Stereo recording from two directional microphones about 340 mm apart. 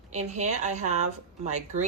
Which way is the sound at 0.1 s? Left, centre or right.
Centre.